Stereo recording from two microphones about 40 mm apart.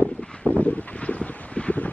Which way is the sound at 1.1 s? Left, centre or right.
Left.